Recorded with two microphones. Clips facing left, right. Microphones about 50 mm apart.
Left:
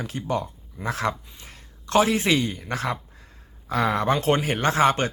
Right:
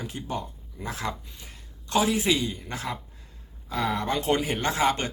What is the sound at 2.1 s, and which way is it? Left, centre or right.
Speech, left.